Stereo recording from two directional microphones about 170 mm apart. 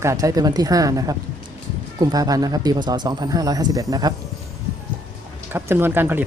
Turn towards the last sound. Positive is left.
turn(degrees=-10)  # may be behind; listen again after turning